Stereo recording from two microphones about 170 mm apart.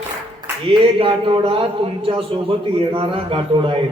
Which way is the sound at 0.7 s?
30° right (ahead or behind).